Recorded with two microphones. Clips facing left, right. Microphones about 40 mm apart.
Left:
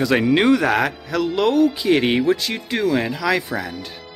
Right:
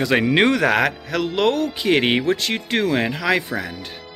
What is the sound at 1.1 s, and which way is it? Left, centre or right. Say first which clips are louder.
Speech: left 3 dB; right.